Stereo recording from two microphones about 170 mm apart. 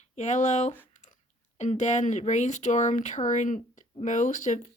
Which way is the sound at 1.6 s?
45° left (ahead or behind).